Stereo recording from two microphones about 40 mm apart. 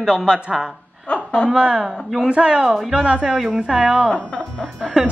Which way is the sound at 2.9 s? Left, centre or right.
Right.